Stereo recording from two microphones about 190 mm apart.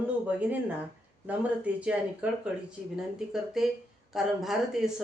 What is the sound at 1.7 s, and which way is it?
Speech, 5° right (ahead or behind).